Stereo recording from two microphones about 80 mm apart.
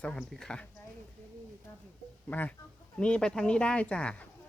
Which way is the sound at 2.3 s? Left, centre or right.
Centre.